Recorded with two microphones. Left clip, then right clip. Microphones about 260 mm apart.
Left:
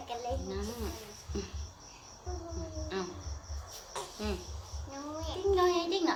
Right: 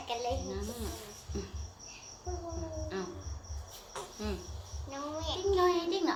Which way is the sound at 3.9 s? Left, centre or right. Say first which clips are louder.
Left 2 dB; centre.